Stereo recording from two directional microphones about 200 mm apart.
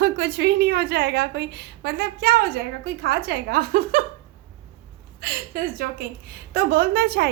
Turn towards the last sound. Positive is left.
turn(degrees=-50)  # may be behind; listen again after turning